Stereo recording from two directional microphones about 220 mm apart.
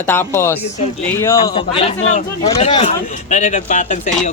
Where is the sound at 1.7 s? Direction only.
30° left (ahead or behind).